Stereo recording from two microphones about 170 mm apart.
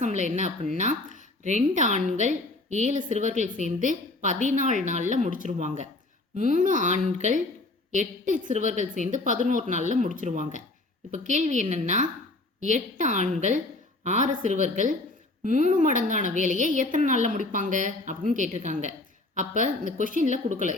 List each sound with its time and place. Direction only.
0.0 s a woman's voice: 45° right (ahead or behind)